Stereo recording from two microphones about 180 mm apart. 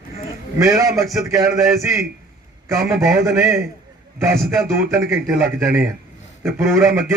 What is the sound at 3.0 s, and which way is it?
Speech, 15° right (ahead or behind).